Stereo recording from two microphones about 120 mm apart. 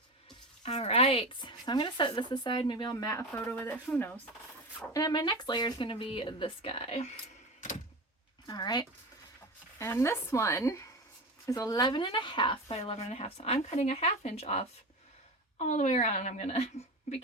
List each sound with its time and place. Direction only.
0.6 s speech: 60° left (ahead or behind); by 4.1 s 15° left (ahead or behind)
4.9 s speech: 35° left (ahead or behind); by 7.1 s 60° left (ahead or behind)
8.4 s speech: 35° left (ahead or behind)
9.7 s a woman's voice: 25° left (ahead or behind); by 12.5 s 40° left (ahead or behind)
12.6 s a woman's voice: 60° left (ahead or behind)